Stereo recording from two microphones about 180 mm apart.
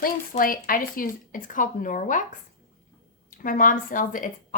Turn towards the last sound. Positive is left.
turn(degrees=45)  # may be behind; listen again after turning